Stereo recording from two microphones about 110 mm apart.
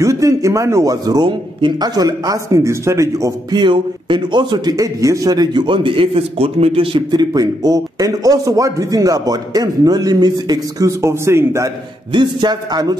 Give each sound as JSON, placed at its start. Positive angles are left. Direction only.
{"t": 0.0, "sound": "a man's voice", "side_deg": -30}
{"t": 3.5, "sound": "a man's voice", "side_deg": -45}
{"t": 4.7, "sound": "a man's voice", "side_deg": -30}
{"t": 7.2, "sound": "a man's voice", "side_deg": -35}
{"t": 12.1, "sound": "a man's voice", "side_deg": -45}